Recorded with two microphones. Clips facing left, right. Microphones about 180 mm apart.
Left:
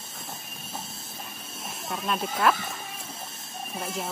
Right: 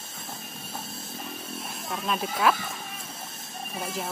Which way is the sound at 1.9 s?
Centre (ahead or behind).